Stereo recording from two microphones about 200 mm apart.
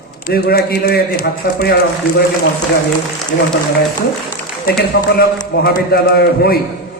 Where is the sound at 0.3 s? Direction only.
50° left (ahead or behind).